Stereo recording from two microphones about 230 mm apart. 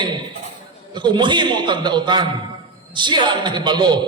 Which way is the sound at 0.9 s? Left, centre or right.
Centre.